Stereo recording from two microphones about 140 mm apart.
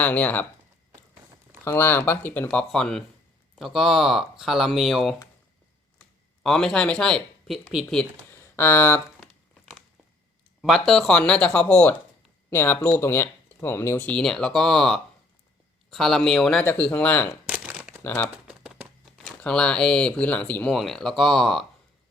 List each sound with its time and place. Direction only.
0.0 s speech: 10° left (ahead or behind)
1.6 s speech: 15° left (ahead or behind); by 5.1 s centre (ahead or behind)
6.4 s speech: 5° left (ahead or behind)
8.3 s a sound: 15° left (ahead or behind)
10.6 s speech: centre (ahead or behind)
17.5 s crumpling: 5° right (ahead or behind)
18.0 s speech: 15° left (ahead or behind)
18.4 s typewriter: 5° right (ahead or behind)
19.4 s speech: 5° left (ahead or behind)